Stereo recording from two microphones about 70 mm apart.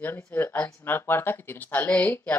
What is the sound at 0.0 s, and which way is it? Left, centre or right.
Speech, left.